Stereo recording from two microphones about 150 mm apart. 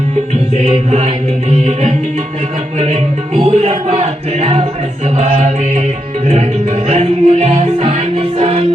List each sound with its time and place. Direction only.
0.5 s music: 50° right (ahead or behind)